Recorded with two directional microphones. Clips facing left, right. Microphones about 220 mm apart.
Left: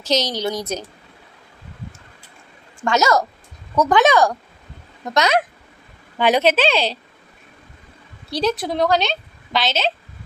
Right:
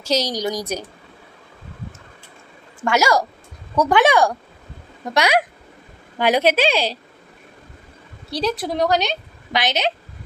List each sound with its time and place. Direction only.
0.0 s a woman's voice: 10° right (ahead or behind)
2.8 s a woman's voice: 10° right (ahead or behind)
8.7 s a woman's voice: 10° right (ahead or behind)